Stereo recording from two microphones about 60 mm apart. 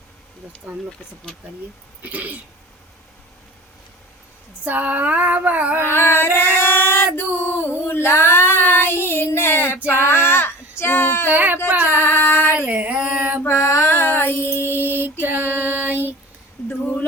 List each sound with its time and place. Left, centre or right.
2.0 s female singing: right
4.6 s female singing: right
5.8 s singing: left
7.9 s female singing: left
11.3 s baby cry: right
11.9 s a sound: left
12.5 s a sound: right
13.4 s female singing: left
14.5 s music: left
14.8 s female singing: right